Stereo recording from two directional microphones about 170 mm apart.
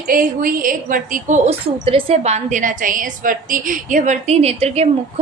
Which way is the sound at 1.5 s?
35° right (ahead or behind).